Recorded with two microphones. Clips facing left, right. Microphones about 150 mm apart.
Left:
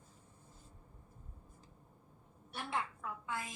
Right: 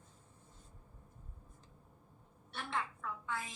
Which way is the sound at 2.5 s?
20° left (ahead or behind).